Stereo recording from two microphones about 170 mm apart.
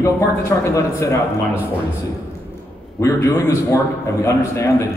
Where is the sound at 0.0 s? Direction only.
20° left (ahead or behind).